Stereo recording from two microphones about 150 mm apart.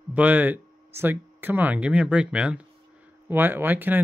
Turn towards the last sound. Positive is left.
turn(degrees=-15)  # may be behind; listen again after turning